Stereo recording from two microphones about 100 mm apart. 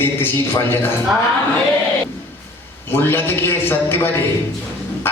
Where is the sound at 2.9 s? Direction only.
20° left (ahead or behind).